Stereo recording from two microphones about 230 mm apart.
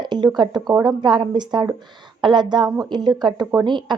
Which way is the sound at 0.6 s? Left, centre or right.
Centre.